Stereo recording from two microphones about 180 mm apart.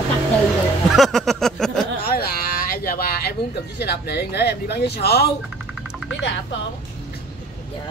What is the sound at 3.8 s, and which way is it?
Speech, 65° left (ahead or behind).